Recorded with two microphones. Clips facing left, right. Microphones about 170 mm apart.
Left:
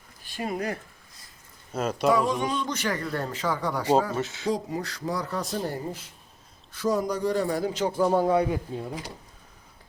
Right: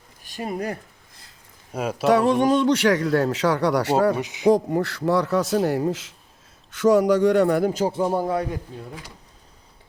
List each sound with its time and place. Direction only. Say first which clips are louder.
0.3 s speech: right 2 dB; 35° right (ahead or behind)
1.7 s speech: right 1 dB; 10° right (ahead or behind)
2.0 s speech: right 7 dB; 65° right (ahead or behind)
4.2 s speech: right 1 dB; 15° right (ahead or behind)
4.4 s speech: right 13 dB; 60° right (ahead or behind)
7.8 s speech: right 3 dB; 35° right (ahead or behind)
8.0 s speech: left 3 dB; 10° right (ahead or behind)
8.3 s a man's voice: left 2 dB; 5° left (ahead or behind)